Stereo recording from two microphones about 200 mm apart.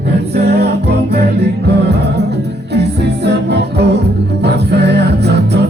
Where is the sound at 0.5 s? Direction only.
55° right (ahead or behind).